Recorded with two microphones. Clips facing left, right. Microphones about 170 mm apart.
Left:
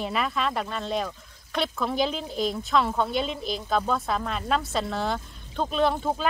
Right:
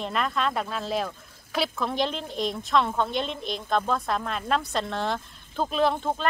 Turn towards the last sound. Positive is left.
turn(degrees=5)  # may be behind; listen again after turning